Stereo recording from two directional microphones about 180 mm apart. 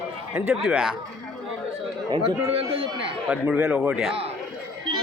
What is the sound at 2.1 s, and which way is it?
Chatter, 25° right (ahead or behind).